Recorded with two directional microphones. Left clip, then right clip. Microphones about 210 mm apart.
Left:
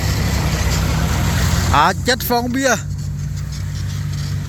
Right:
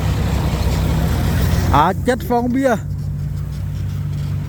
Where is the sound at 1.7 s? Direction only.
15° right (ahead or behind).